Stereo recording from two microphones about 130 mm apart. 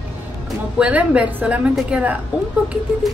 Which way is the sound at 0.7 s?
10° right (ahead or behind).